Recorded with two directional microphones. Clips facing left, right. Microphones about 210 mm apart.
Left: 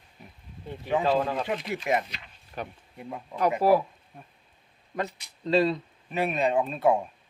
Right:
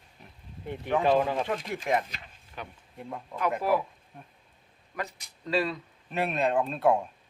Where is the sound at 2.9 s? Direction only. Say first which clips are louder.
Left 1 dB; 5° left (ahead or behind).